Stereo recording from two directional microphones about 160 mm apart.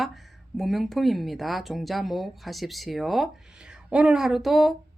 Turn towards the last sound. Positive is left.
turn(degrees=0)  # may be behind; listen again after turning